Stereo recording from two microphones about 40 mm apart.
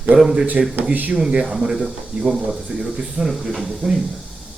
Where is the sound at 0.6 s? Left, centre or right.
Centre.